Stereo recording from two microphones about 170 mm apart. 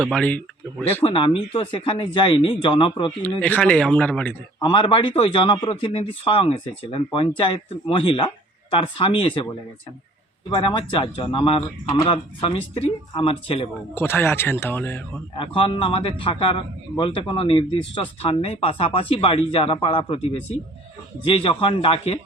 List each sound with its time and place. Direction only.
0.0 s speech: 5° left (ahead or behind)
1.0 s a man's voice: 30° left (ahead or behind)
3.4 s speech: 5° left (ahead or behind)
4.6 s a man's voice: 30° left (ahead or behind)
13.9 s speech: 15° left (ahead or behind)
15.4 s a man's voice: 30° left (ahead or behind)